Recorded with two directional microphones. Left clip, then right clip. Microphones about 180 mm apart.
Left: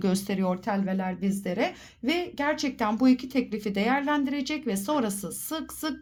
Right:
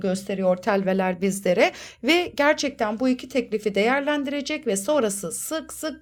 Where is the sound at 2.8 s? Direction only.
10° right (ahead or behind).